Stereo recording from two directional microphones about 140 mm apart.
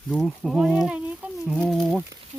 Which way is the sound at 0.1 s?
Centre (ahead or behind).